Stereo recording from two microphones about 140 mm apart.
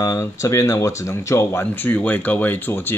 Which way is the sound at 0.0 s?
25° left (ahead or behind).